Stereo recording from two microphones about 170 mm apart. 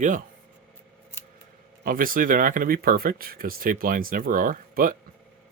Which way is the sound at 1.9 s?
55° right (ahead or behind).